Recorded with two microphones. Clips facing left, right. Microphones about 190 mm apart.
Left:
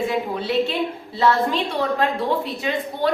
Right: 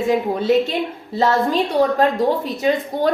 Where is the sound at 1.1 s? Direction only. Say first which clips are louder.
Right 3 dB; 40° right (ahead or behind).